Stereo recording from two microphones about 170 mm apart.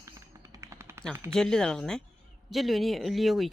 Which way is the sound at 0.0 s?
15° right (ahead or behind).